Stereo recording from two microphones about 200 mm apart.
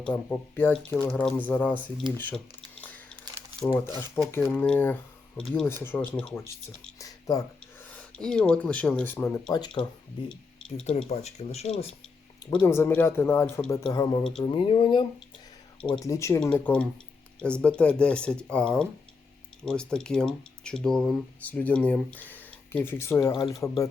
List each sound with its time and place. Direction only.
0.0 s speech: 10° left (ahead or behind)
3.7 s speech: 10° left (ahead or behind)
7.0 s speech: 20° left (ahead or behind)
7.9 s speech: 5° left (ahead or behind); by 9.8 s 20° left (ahead or behind)
10.2 s speech: 5° left (ahead or behind)
10.8 s speech: 35° left (ahead or behind)
12.5 s speech: 10° left (ahead or behind); by 15.0 s 25° left (ahead or behind)
15.8 s speech: 5° left (ahead or behind)